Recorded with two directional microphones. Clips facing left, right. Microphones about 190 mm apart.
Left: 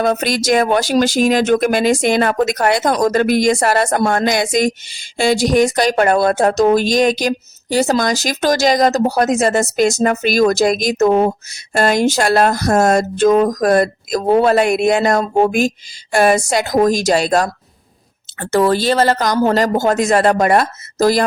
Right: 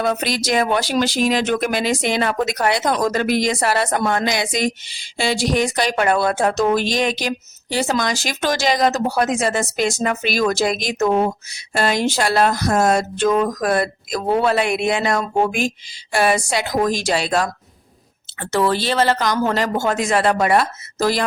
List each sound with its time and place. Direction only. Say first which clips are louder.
0.0 s speech: left 4 dB; 45° left (ahead or behind)